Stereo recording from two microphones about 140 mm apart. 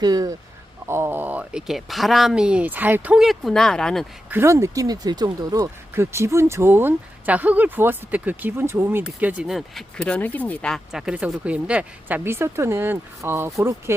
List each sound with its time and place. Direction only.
0.0 s speech: 25° right (ahead or behind); by 4.0 s 5° left (ahead or behind)
4.3 s speech: 20° right (ahead or behind)
9.0 s speech: 5° right (ahead or behind)
10.9 s speech: 5° right (ahead or behind)